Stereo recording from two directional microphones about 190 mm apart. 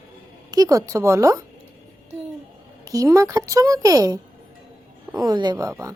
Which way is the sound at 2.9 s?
15° right (ahead or behind).